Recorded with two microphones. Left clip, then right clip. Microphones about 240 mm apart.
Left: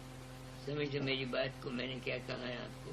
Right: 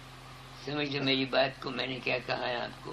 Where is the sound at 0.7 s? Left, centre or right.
Centre.